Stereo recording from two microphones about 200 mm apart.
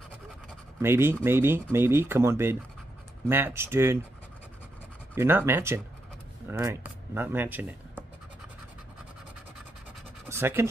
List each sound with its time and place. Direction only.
0.8 s speech: 10° right (ahead or behind)
5.1 s speech: 10° right (ahead or behind)
10.2 s scratch: 10° right (ahead or behind)